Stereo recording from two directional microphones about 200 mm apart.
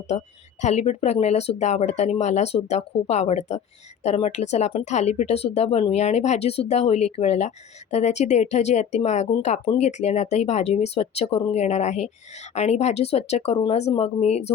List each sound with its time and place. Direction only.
0.1 s speech: 30° left (ahead or behind)